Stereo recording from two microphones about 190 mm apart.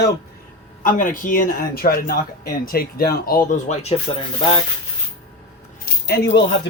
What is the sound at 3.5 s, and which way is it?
Speech, 40° left (ahead or behind).